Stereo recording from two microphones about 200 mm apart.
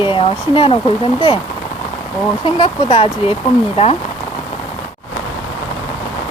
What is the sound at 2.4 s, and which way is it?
Speech, 25° left (ahead or behind).